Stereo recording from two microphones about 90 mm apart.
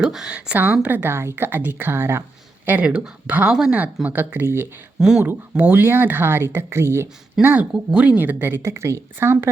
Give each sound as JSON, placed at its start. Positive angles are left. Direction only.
{"t": 0.0, "sound": "speech", "side_deg": -5}
{"t": 4.9, "sound": "speech", "side_deg": -5}
{"t": 5.2, "sound": "speech", "side_deg": -20}